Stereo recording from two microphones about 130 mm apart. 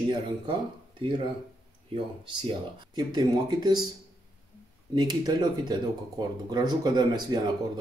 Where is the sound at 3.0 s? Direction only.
30° right (ahead or behind).